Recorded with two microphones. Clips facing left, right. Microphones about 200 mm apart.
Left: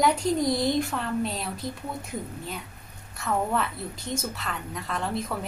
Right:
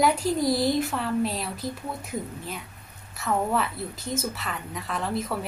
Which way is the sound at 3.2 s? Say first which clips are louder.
Right 1 dB; centre (ahead or behind).